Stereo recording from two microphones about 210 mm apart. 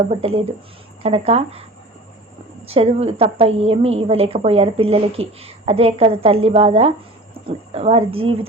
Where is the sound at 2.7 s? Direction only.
25° right (ahead or behind).